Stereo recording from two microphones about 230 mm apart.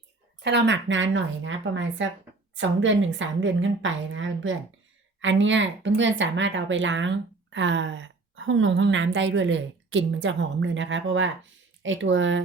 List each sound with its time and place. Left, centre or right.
0.4 s a woman's voice: right